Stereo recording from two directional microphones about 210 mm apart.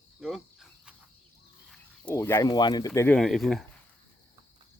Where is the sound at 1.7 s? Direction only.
10° left (ahead or behind).